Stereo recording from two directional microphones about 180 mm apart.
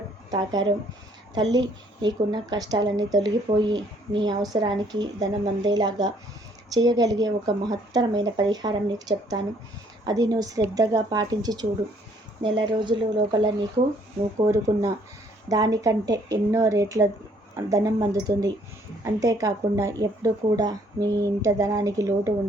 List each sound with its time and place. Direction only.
0.3 s speech: 25° right (ahead or behind)
14.3 s speech: 15° right (ahead or behind)